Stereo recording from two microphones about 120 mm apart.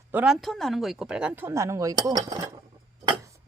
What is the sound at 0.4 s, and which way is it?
Speech, centre (ahead or behind).